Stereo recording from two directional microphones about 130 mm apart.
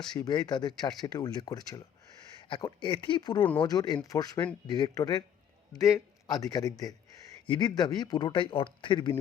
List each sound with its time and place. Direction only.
0.3 s a man's voice: 35° left (ahead or behind)